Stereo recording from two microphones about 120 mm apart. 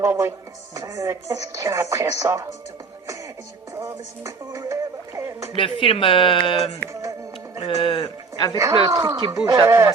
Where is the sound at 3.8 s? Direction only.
25° right (ahead or behind).